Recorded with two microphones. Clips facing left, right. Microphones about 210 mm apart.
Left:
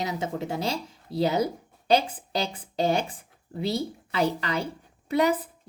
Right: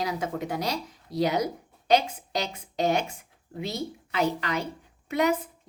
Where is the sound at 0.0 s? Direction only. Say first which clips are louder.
Even; 25° left (ahead or behind).